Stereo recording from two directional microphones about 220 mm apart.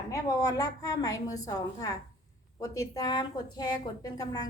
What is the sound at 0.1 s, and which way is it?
A woman's voice, 15° left (ahead or behind).